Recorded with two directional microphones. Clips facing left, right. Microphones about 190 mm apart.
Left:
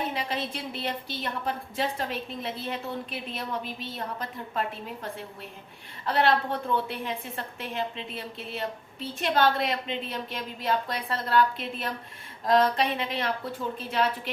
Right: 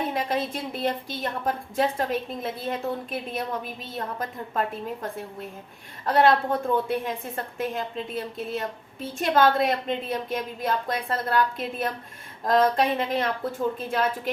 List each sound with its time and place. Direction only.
0.1 s a woman's voice: 50° right (ahead or behind)
6.1 s a woman's voice: 45° right (ahead or behind)